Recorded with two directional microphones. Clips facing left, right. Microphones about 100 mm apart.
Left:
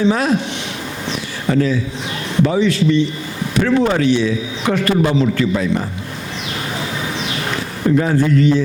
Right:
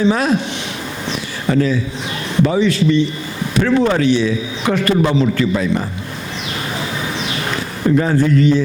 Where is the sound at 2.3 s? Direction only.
25° right (ahead or behind).